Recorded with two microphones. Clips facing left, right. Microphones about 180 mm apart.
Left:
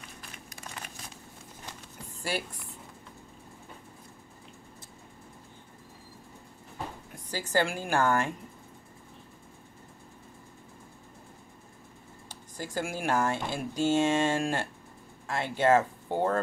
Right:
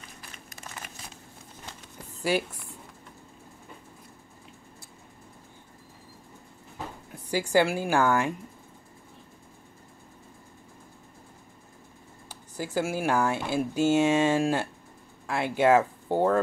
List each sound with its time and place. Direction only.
2.2 s speech: 10° right (ahead or behind)
7.2 s speech: 10° right (ahead or behind)
12.3 s speech: 10° right (ahead or behind)